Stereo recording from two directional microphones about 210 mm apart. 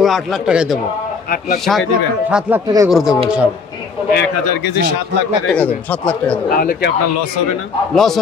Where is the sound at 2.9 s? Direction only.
Centre (ahead or behind).